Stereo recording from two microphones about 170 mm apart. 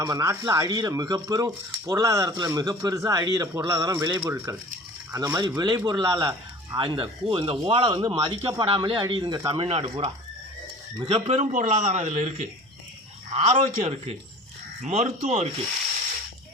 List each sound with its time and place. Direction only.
0.0 s speech: 20° right (ahead or behind)
9.6 s speech: 35° right (ahead or behind)